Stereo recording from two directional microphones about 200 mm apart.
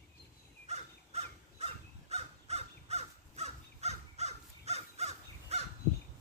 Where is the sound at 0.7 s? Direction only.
30° right (ahead or behind).